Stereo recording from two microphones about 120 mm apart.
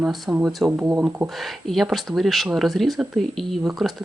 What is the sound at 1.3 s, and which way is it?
Speech, centre (ahead or behind).